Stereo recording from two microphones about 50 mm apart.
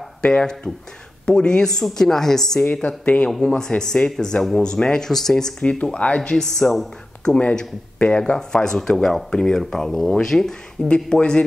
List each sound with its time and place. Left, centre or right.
0.2 s speech: centre
2.6 s speech: left
3.3 s speech: centre
4.4 s speech: centre
4.6 s speech: centre
5.6 s speech: left
6.4 s speech: centre
7.3 s speech: left; by 10.9 s centre
10.9 s speech: centre